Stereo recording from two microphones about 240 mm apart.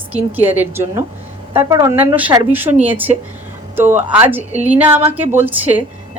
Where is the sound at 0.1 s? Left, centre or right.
Centre.